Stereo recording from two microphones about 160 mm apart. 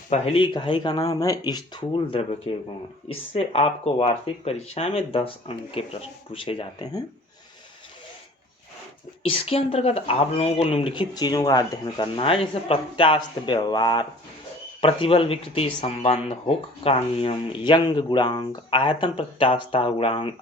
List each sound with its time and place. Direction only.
0.1 s speech: 35° left (ahead or behind)
9.2 s speech: 35° left (ahead or behind)